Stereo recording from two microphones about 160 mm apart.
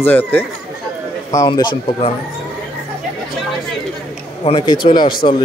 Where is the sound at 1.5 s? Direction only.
30° left (ahead or behind).